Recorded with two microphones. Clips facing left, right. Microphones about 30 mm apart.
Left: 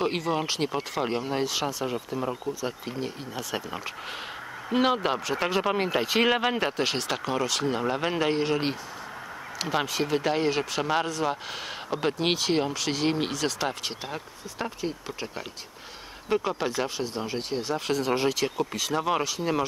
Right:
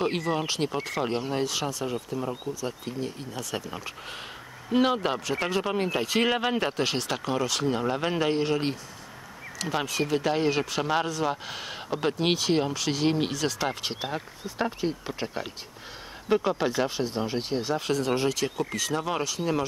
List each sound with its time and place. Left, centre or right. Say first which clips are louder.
0.0 s speech: even; centre
13.8 s speech: right 2 dB; centre
17.9 s speech: left 2 dB; centre